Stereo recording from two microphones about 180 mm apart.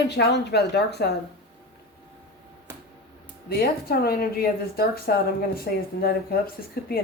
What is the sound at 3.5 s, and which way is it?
A woman's voice, 60° left (ahead or behind).